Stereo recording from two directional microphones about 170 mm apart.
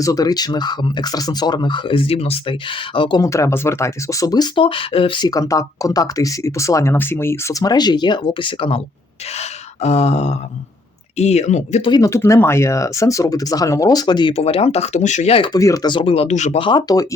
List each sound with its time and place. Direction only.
0.0 s speech: 20° left (ahead or behind)
3.2 s speech: 20° left (ahead or behind)
9.3 s gasp: 40° left (ahead or behind)
11.2 s speech: 40° left (ahead or behind)
11.9 s speech: 20° left (ahead or behind)